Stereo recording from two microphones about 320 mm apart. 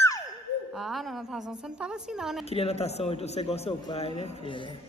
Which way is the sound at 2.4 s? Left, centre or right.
Centre.